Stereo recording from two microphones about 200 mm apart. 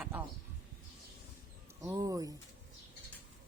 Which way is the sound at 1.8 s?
15° right (ahead or behind).